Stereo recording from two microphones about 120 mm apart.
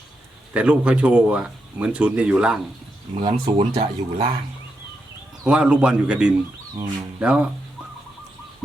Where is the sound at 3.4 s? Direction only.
45° right (ahead or behind).